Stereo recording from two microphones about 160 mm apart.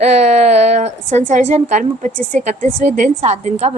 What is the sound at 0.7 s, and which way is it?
A woman's voice, 45° right (ahead or behind).